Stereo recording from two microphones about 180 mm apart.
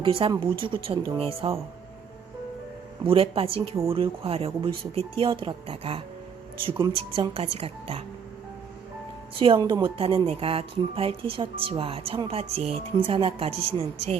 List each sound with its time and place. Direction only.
0.0 s a woman's voice: 30° right (ahead or behind)
3.1 s a woman's voice: 30° right (ahead or behind)
9.4 s a woman's voice: 25° right (ahead or behind)